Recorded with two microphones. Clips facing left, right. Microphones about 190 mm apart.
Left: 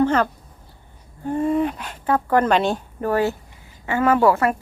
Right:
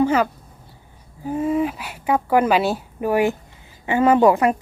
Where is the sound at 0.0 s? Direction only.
10° right (ahead or behind).